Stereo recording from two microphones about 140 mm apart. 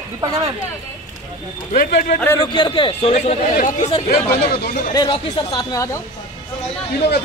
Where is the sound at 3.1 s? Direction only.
55° left (ahead or behind).